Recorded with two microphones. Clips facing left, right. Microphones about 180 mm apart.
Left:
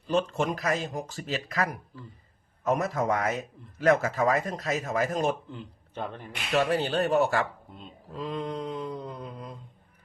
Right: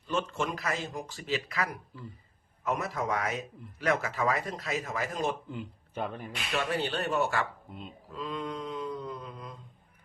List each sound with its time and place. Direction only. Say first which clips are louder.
0.1 s speech: left 5 dB; 35° left (ahead or behind)
5.5 s a man's voice: right 2 dB; 10° right (ahead or behind)
6.5 s speech: left 6 dB; 40° left (ahead or behind)